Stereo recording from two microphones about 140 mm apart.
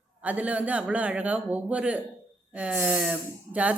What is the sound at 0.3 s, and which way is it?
Speech, 10° right (ahead or behind).